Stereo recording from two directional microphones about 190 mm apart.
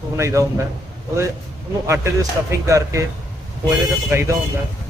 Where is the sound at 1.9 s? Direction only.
15° right (ahead or behind).